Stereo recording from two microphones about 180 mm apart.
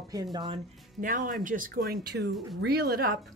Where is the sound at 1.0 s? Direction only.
45° right (ahead or behind).